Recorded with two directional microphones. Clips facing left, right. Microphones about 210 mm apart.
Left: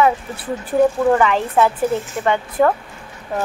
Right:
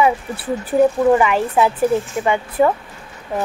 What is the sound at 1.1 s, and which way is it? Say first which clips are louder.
Speech: even; 10° right (ahead or behind).